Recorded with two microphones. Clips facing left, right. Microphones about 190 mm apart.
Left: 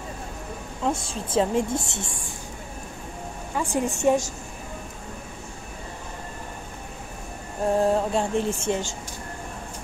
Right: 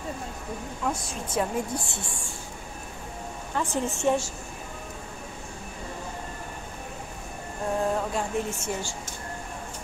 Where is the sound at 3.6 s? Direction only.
15° left (ahead or behind).